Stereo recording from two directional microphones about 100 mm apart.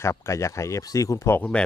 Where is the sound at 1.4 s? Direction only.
10° left (ahead or behind).